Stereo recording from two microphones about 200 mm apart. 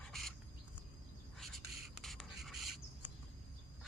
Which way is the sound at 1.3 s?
Centre (ahead or behind).